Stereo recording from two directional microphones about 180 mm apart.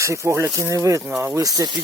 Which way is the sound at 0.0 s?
15° right (ahead or behind).